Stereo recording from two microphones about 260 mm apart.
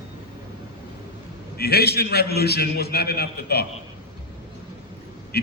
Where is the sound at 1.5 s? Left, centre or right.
Left.